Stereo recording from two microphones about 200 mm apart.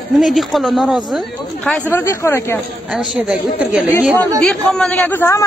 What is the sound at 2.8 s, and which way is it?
A man's voice, centre (ahead or behind).